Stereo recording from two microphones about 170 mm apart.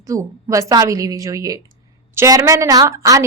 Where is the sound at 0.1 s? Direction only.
20° right (ahead or behind).